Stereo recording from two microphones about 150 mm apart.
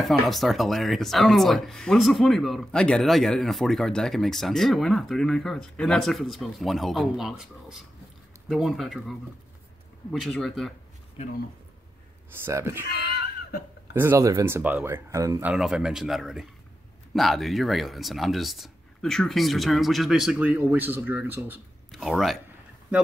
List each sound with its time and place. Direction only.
0.3 s speech: centre (ahead or behind)
10.2 s speech: centre (ahead or behind)
12.3 s speech: 15° right (ahead or behind)
12.9 s screaming: 90° left
13.9 s speech: 15° right (ahead or behind)
15.4 s speech: 5° right (ahead or behind)
21.9 s speech: centre (ahead or behind)